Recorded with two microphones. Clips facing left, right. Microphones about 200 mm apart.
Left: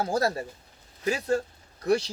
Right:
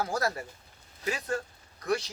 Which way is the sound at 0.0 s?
30° left (ahead or behind).